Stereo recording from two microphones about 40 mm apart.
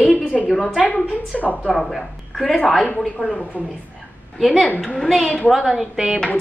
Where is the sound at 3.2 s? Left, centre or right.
Left.